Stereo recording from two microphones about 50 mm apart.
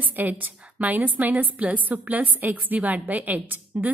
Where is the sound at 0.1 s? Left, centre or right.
Right.